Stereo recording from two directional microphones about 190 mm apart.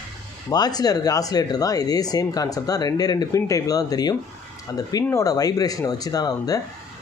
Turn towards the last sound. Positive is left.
turn(degrees=20)  # may be behind; listen again after turning